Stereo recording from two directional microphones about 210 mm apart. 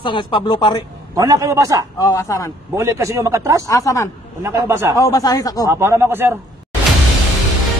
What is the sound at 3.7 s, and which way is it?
Speech, 15° left (ahead or behind).